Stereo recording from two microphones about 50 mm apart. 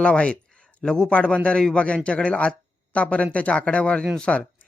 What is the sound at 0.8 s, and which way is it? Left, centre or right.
Speech, centre.